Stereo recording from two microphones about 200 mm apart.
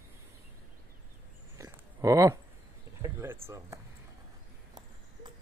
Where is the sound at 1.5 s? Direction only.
15° right (ahead or behind).